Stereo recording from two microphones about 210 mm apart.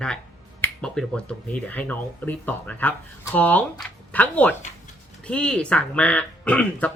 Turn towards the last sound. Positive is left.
turn(degrees=5)  # may be behind; listen again after turning